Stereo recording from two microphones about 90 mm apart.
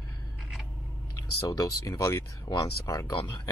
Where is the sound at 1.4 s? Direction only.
40° left (ahead or behind).